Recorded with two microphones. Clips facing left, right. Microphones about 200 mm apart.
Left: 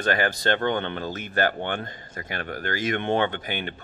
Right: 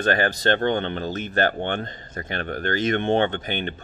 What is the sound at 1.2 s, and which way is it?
Speech, 25° right (ahead or behind).